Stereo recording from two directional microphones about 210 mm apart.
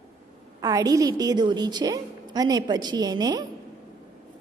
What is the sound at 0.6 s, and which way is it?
A woman's voice, 20° right (ahead or behind).